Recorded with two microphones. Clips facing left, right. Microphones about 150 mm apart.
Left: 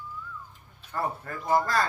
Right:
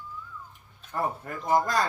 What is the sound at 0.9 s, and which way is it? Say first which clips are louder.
Speech: right 1 dB; 15° right (ahead or behind).